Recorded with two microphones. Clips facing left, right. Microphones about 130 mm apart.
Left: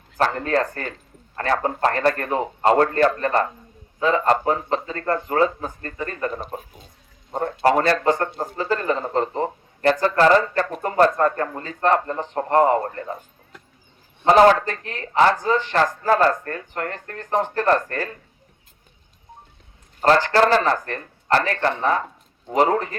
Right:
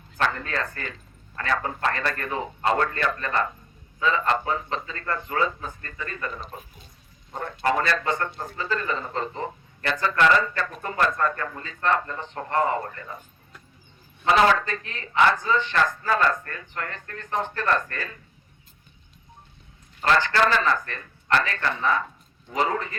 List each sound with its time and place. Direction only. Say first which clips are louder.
0.2 s speech: left 6 dB; 40° left (ahead or behind)
14.3 s speech: left 6 dB; 40° left (ahead or behind)
20.0 s speech: left 5 dB; 40° left (ahead or behind)